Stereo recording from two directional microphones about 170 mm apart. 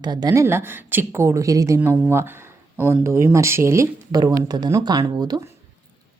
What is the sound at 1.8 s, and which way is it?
Speech, 10° right (ahead or behind).